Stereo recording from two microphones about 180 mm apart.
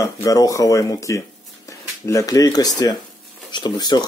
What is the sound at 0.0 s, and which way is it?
Speech, 20° left (ahead or behind).